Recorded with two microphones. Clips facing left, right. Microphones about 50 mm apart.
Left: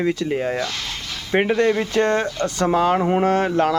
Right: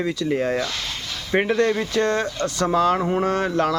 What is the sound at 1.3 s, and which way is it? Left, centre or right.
Speech, centre.